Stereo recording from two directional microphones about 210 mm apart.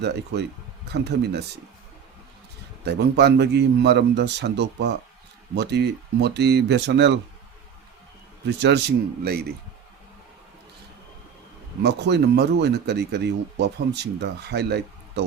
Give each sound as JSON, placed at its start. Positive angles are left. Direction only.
{"t": 0.9, "sound": "speech", "side_deg": -50}
{"t": 2.8, "sound": "speech", "side_deg": -50}
{"t": 8.4, "sound": "speech", "side_deg": -55}
{"t": 11.8, "sound": "speech", "side_deg": -55}